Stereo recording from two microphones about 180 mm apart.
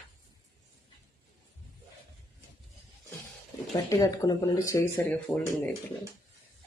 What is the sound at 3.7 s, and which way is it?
Speech, 20° left (ahead or behind).